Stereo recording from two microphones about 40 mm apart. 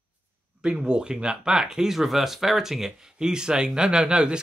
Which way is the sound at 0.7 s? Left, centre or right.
Right.